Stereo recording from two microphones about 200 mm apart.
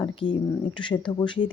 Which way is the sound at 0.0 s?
25° left (ahead or behind).